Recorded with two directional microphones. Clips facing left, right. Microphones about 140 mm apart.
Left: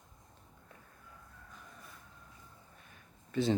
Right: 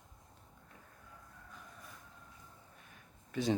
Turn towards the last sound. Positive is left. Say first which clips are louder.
# left 3 dB
turn(degrees=-10)  # may be behind; listen again after turning